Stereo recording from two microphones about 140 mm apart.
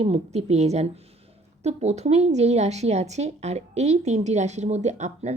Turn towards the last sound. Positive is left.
turn(degrees=-55)  # may be behind; listen again after turning